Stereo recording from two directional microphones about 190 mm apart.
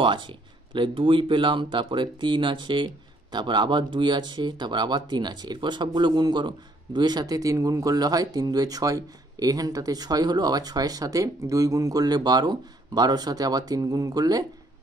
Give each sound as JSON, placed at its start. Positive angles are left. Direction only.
{"t": 0.0, "sound": "speech", "side_deg": -25}